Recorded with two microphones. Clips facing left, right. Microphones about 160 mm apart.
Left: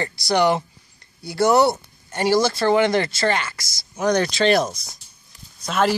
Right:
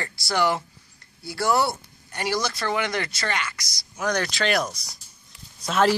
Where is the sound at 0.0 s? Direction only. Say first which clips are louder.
Left 5 dB; 20° left (ahead or behind).